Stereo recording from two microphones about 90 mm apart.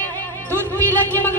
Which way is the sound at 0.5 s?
25° left (ahead or behind).